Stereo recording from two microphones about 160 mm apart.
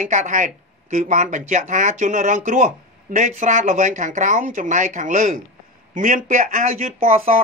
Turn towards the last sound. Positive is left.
turn(degrees=-40)  # may be behind; listen again after turning